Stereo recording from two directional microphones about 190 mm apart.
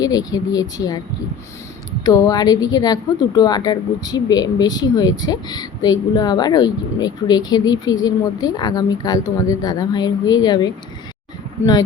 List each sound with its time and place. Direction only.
0.0 s speech: 20° left (ahead or behind)
2.0 s speech: 20° left (ahead or behind)